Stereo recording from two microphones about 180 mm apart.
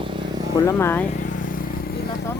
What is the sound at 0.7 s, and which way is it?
Speech, 15° left (ahead or behind).